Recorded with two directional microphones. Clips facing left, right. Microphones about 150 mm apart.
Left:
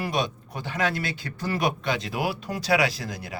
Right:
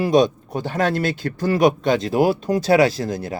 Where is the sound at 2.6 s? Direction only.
25° right (ahead or behind).